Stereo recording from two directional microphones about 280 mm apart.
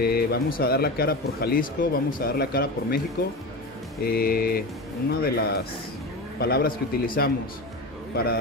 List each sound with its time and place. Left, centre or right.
0.0 s speech: left
4.0 s speech: left